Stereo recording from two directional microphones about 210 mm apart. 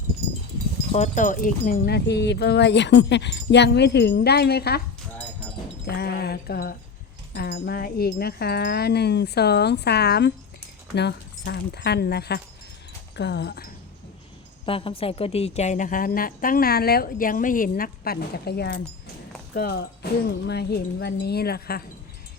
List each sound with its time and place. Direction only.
0.9 s speech: 35° left (ahead or behind)
5.8 s speech: 50° left (ahead or behind)
14.6 s a woman's voice: 25° left (ahead or behind); by 21.8 s 45° left (ahead or behind)